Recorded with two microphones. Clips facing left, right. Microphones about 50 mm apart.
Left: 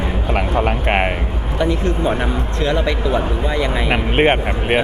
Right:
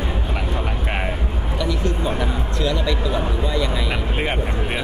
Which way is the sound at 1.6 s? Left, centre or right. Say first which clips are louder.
Left 5 dB; left.